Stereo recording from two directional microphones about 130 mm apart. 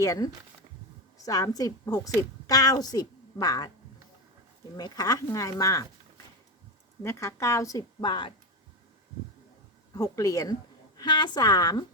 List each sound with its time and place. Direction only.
0.0 s a woman's voice: 25° left (ahead or behind)
4.8 s a woman's voice: 30° left (ahead or behind)
7.0 s a woman's voice: 20° left (ahead or behind); by 8.3 s 35° left (ahead or behind)
9.9 s a woman's voice: 25° left (ahead or behind)